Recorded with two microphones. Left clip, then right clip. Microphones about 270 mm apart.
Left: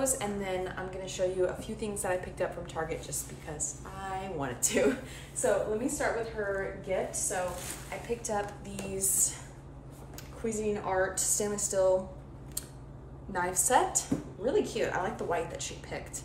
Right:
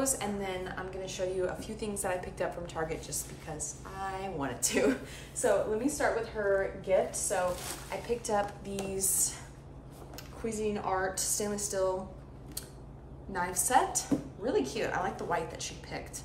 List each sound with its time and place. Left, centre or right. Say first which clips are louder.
0.0 s a woman's voice: left 1 dB; centre
10.4 s a woman's voice: left 1 dB; centre
13.3 s a woman's voice: left 1 dB; centre